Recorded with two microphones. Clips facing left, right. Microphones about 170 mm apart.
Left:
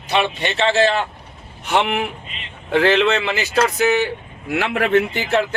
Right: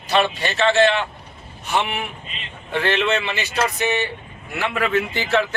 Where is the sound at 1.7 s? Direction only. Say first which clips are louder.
Left 4 dB; 85° left.